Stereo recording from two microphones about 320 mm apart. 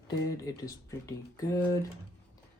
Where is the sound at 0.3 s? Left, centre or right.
Centre.